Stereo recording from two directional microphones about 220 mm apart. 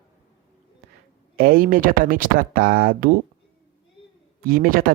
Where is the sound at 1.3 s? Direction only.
40° right (ahead or behind).